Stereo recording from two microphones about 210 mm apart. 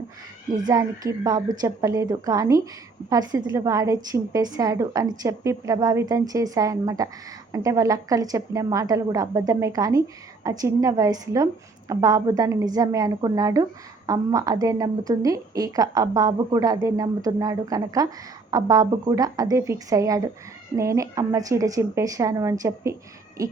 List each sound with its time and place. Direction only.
0.7 s a woman's voice: 15° right (ahead or behind)